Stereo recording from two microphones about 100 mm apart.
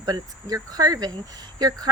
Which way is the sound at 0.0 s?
40° right (ahead or behind).